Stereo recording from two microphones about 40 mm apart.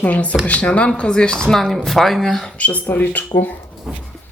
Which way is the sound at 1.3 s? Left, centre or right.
Centre.